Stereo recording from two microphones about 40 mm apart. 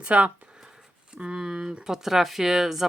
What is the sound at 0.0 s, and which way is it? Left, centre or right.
Speech, right.